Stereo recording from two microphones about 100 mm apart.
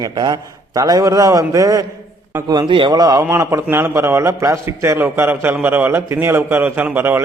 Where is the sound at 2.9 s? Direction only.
35° right (ahead or behind); by 7.2 s 20° right (ahead or behind).